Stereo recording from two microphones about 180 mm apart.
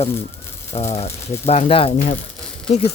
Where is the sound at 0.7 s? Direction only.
35° left (ahead or behind).